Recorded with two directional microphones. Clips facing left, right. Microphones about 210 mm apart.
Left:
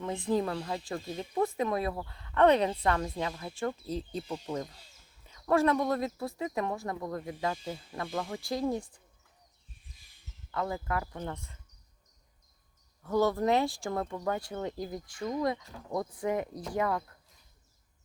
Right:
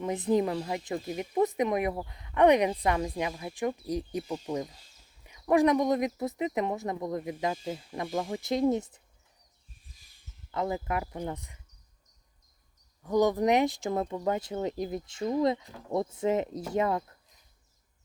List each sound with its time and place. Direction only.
0.0 s speech: 20° right (ahead or behind)
10.5 s speech: 20° right (ahead or behind)
13.0 s speech: 15° right (ahead or behind)